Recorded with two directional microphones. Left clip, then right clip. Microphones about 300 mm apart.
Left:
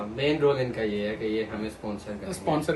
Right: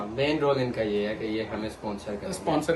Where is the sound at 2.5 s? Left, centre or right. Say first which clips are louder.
Even; centre.